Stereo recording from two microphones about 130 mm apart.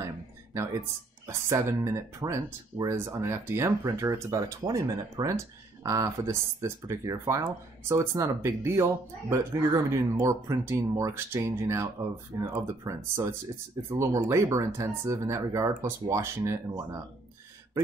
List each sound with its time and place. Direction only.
1.2 s speech: 25° right (ahead or behind)